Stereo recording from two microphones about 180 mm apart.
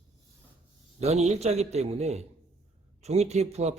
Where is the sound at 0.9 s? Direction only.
35° right (ahead or behind).